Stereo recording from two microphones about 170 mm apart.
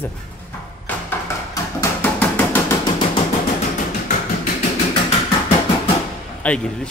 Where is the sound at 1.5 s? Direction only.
15° left (ahead or behind).